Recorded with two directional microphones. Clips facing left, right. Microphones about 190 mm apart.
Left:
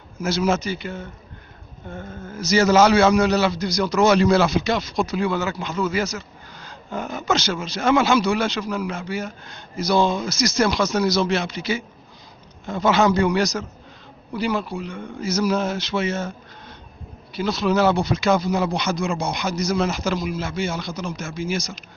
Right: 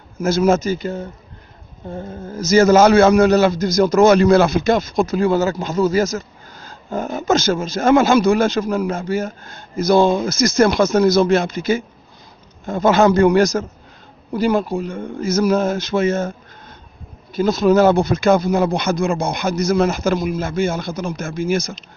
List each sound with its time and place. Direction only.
0.2 s a man's voice: 50° right (ahead or behind)